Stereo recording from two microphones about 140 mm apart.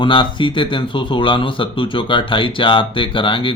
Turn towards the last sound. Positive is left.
turn(degrees=35)  # may be behind; listen again after turning